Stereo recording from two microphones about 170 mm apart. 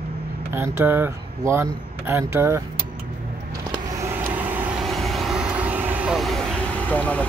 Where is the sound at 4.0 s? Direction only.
15° right (ahead or behind).